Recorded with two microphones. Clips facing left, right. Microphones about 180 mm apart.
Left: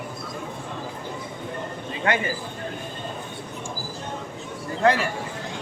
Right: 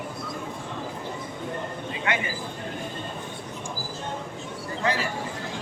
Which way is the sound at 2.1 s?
35° left (ahead or behind).